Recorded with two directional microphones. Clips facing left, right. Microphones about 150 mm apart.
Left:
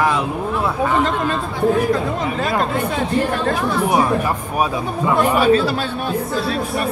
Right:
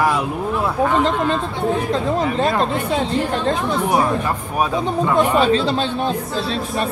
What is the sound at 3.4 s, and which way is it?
Speech, 20° right (ahead or behind).